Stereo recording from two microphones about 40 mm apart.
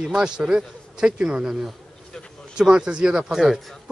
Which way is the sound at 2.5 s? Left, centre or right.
Centre.